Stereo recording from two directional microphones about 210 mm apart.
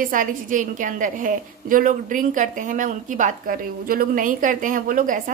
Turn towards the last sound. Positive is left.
turn(degrees=-40)  # may be behind; listen again after turning